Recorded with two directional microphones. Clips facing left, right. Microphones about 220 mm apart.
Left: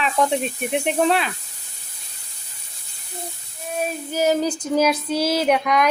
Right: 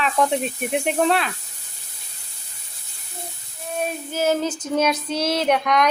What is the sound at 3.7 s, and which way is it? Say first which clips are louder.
Child singing: left 1 dB; 5° left (ahead or behind).